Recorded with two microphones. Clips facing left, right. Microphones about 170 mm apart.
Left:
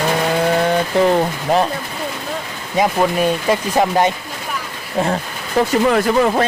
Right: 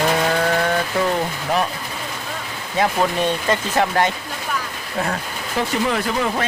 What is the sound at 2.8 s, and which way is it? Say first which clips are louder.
Speech: left 3 dB; 10° left (ahead or behind).